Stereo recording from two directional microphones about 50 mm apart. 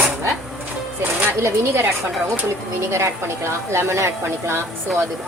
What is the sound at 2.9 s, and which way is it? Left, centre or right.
Speech, right.